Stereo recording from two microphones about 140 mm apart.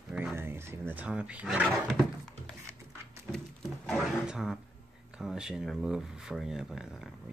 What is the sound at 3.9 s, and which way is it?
Speech, centre (ahead or behind).